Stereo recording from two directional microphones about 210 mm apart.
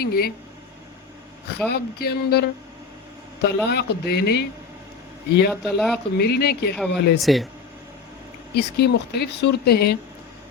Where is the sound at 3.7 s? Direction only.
50° left (ahead or behind).